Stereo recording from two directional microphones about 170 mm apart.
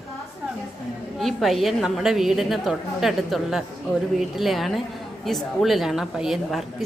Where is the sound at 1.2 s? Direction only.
Centre (ahead or behind).